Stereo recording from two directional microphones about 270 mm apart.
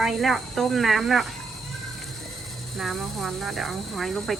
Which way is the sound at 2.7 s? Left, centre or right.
Centre.